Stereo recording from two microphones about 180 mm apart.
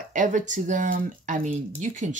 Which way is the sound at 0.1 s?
45° right (ahead or behind).